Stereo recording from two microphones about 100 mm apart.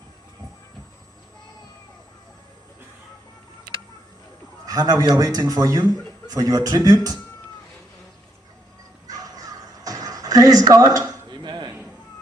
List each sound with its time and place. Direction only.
4.6 s speech: 40° right (ahead or behind)
9.0 s crow: 40° right (ahead or behind)